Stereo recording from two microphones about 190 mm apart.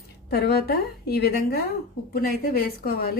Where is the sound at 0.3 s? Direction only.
55° left (ahead or behind).